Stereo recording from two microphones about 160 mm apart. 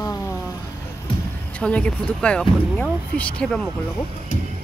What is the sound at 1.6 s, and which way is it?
Speech, 10° left (ahead or behind).